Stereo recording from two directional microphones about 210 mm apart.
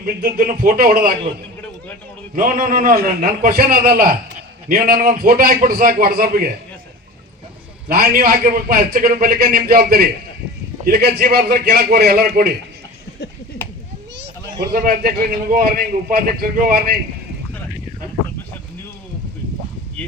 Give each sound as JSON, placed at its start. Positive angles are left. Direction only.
{"t": 0.0, "sound": "a man's voice", "side_deg": -45}
{"t": 2.3, "sound": "a man's voice", "side_deg": -40}
{"t": 7.9, "sound": "a man's voice", "side_deg": -45}
{"t": 14.6, "sound": "a man's voice", "side_deg": -45}